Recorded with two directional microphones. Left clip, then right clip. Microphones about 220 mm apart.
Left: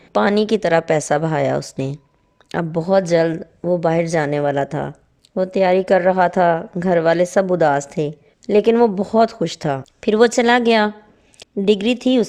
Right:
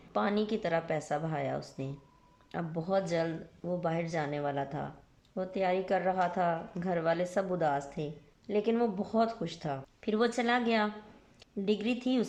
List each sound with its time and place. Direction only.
0.1 s a woman's voice: 50° left (ahead or behind)